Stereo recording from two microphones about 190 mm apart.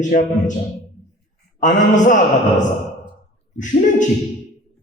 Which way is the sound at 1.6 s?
40° left (ahead or behind).